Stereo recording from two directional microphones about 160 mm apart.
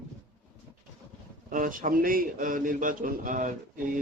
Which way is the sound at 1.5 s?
55° right (ahead or behind).